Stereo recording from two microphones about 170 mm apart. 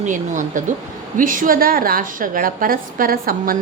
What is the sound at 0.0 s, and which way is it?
A woman's voice, 50° right (ahead or behind).